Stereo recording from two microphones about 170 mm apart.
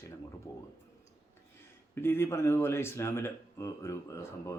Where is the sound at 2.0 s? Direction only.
15° left (ahead or behind).